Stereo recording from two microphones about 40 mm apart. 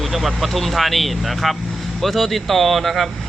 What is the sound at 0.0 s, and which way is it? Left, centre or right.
Speech, centre.